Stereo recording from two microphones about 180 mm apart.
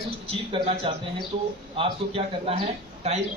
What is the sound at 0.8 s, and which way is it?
A man's voice, 30° right (ahead or behind).